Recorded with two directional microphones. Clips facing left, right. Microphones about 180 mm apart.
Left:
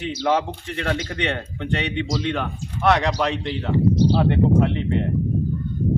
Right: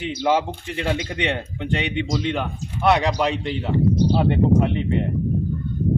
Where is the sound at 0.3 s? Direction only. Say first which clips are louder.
Right 1 dB; 5° right (ahead or behind).